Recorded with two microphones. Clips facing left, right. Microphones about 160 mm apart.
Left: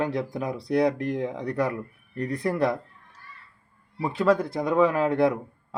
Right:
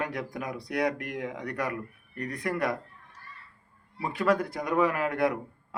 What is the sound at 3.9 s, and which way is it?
Speech, 25° left (ahead or behind).